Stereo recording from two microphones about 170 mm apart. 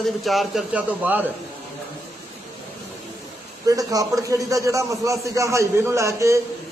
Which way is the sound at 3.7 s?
20° right (ahead or behind).